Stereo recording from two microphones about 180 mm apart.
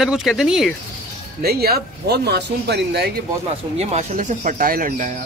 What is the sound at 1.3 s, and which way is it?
Speech, 60° right (ahead or behind).